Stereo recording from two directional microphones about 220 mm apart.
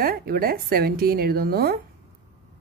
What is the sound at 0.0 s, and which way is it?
Speech, 45° right (ahead or behind).